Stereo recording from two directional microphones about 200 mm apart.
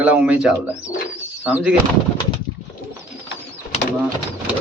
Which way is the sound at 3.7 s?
35° left (ahead or behind).